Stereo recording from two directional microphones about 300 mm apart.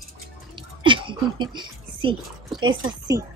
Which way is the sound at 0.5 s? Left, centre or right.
Centre.